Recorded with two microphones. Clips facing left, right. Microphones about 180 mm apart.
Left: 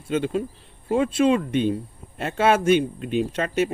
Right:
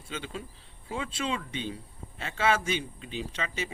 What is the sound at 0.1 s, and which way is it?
Speech, 55° left (ahead or behind).